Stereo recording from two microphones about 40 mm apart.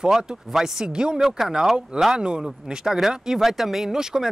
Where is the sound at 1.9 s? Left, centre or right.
Centre.